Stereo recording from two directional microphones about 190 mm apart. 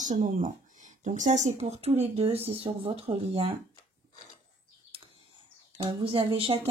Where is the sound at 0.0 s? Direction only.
40° right (ahead or behind).